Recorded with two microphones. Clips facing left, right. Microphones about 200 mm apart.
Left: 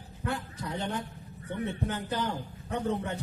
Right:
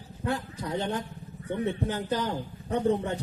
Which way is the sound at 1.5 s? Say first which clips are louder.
Right 4 dB; 20° right (ahead or behind).